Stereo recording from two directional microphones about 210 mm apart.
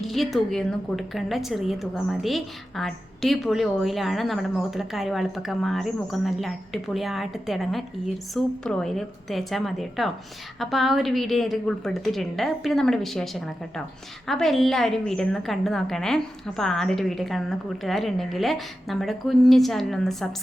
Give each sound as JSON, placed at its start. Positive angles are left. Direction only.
{"t": 0.0, "sound": "a woman's voice", "side_deg": 0}